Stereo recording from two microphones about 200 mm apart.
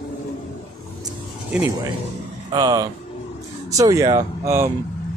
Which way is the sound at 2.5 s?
20° right (ahead or behind).